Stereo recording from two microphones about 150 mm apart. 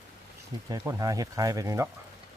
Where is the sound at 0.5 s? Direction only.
25° right (ahead or behind).